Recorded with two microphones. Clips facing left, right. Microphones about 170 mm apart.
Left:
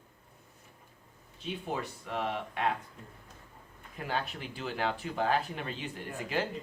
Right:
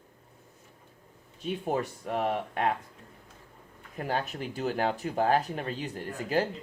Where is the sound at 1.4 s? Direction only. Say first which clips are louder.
Right 6 dB; 45° right (ahead or behind).